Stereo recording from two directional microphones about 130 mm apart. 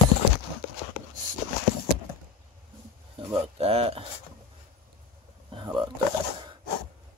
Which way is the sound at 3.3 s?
50° right (ahead or behind).